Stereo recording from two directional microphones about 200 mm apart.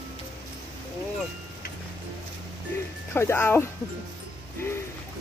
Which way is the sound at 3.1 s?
15° left (ahead or behind).